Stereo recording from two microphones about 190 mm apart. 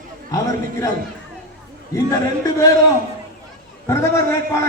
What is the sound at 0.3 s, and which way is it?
Speech, 15° left (ahead or behind).